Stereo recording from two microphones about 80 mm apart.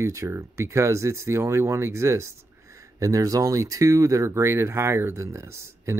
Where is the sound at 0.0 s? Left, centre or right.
Right.